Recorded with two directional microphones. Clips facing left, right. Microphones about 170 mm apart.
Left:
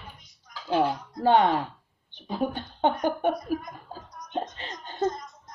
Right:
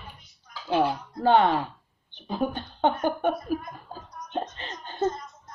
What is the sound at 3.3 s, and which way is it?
Female singing, 20° left (ahead or behind).